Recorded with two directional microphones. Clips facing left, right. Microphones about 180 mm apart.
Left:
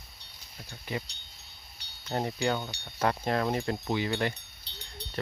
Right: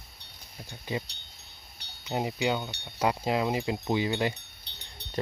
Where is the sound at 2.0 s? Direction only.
15° right (ahead or behind).